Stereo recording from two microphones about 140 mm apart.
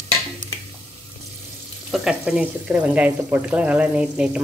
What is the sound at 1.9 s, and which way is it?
Speech, 5° right (ahead or behind).